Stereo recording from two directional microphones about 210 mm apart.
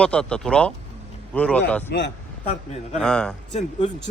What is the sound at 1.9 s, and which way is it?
Speech, 55° left (ahead or behind).